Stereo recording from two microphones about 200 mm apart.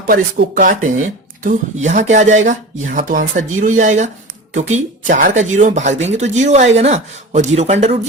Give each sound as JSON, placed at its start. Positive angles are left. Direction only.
{"t": 0.1, "sound": "speech", "side_deg": -45}